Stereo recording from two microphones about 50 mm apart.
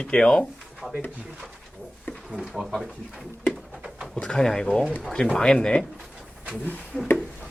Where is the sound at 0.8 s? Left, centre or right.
Centre.